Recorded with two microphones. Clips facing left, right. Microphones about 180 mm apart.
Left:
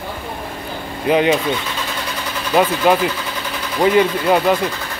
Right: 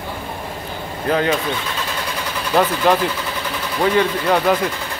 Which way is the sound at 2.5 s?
5° left (ahead or behind).